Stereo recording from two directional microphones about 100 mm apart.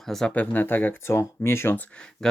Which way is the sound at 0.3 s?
20° left (ahead or behind).